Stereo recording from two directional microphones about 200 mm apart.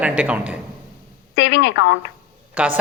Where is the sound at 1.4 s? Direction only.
70° left (ahead or behind).